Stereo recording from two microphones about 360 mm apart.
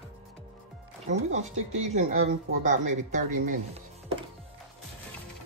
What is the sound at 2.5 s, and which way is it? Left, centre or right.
Speech, right.